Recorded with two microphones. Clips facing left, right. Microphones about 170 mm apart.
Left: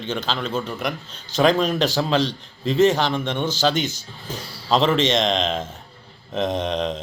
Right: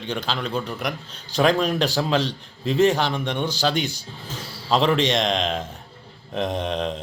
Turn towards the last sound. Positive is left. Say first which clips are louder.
# left 2 dB
turn(degrees=-5)  # may be behind; listen again after turning